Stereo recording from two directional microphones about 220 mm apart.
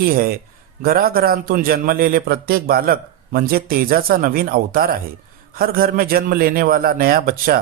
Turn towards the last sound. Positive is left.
turn(degrees=-40)  # may be behind; listen again after turning